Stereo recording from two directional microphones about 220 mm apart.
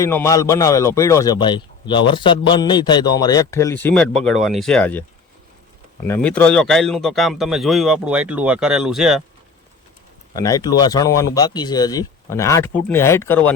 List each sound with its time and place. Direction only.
0.0 s a man's voice: 15° left (ahead or behind)
10.3 s speech: 15° left (ahead or behind)